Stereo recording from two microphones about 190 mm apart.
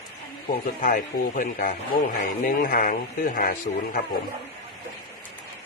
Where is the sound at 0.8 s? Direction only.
45° left (ahead or behind).